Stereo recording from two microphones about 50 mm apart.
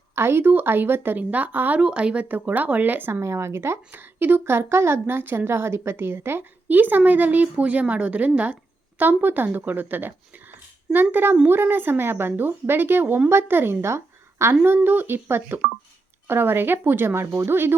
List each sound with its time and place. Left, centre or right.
0.2 s speech: right
1.2 s a woman's voice: right
1.8 s speech: right
2.2 s a woman's voice: right
3.1 s a woman's voice: right
3.9 s a woman's voice: right
4.4 s speech: right
5.5 s a woman's voice: right
6.7 s a woman's voice: right
9.0 s a woman's voice: right
13.2 s speech: right
13.8 s speech: right
14.8 s speech: right
17.3 s speech: right